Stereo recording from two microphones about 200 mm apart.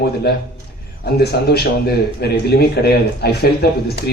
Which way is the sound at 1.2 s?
55° left (ahead or behind).